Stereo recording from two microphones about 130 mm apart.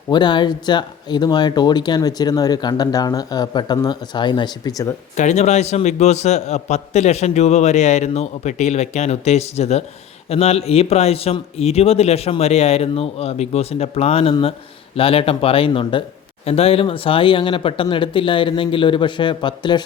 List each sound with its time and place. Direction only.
0.1 s speech: 35° left (ahead or behind)
5.1 s a man's voice: 65° left (ahead or behind); by 19.8 s 35° left (ahead or behind)